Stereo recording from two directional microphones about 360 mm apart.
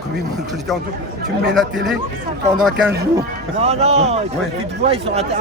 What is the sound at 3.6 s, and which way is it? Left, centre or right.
Speech, centre.